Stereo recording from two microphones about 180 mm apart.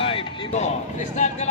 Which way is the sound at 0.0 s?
30° left (ahead or behind).